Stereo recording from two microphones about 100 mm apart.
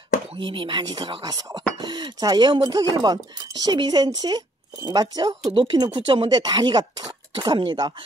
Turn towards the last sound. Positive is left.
turn(degrees=-45)  # may be behind; listen again after turning